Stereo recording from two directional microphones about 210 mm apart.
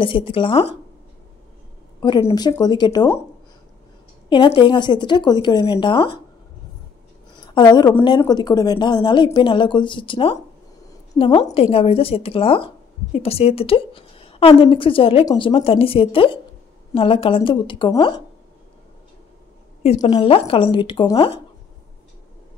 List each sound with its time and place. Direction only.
0.0 s a woman's voice: 25° left (ahead or behind)
2.0 s a woman's voice: 15° left (ahead or behind)
4.6 s a woman's voice: 20° left (ahead or behind)
7.5 s a woman's voice: 20° left (ahead or behind)
19.8 s a woman's voice: 25° left (ahead or behind)